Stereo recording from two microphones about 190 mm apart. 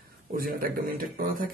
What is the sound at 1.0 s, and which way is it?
Speech, 50° right (ahead or behind).